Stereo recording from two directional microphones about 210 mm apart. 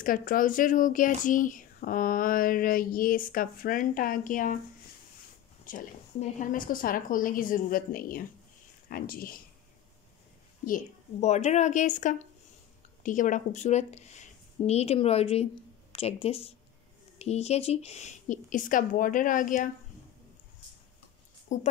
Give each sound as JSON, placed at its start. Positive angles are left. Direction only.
{"t": 0.0, "sound": "speech", "side_deg": 40}
{"t": 5.7, "sound": "speech", "side_deg": 40}
{"t": 10.6, "sound": "a woman's voice", "side_deg": 40}
{"t": 21.5, "sound": "speech", "side_deg": 35}